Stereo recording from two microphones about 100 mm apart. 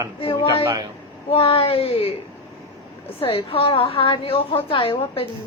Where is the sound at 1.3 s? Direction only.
75° left (ahead or behind).